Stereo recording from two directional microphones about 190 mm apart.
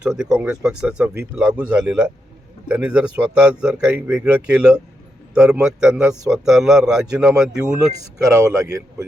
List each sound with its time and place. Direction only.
0.0 s speech: 5° right (ahead or behind)
8.2 s a man's voice: 15° right (ahead or behind)